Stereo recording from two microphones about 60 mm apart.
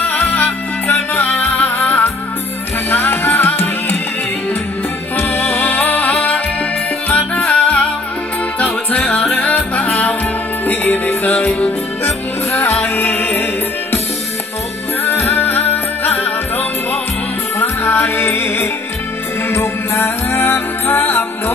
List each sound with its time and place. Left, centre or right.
0.0 s music: left
1.8 s music: left
5.1 s music: left
12.5 s music: left
15.0 s music: left
17.6 s music: left